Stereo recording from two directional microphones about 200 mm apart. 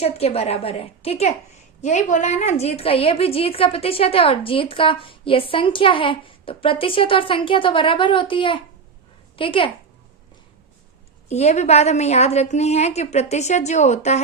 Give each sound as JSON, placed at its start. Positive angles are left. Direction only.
{"t": 0.0, "sound": "a woman's voice", "side_deg": 30}
{"t": 11.3, "sound": "a woman's voice", "side_deg": 35}